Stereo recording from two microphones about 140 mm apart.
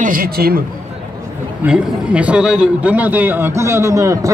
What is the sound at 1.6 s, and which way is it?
A man's voice, 5° right (ahead or behind).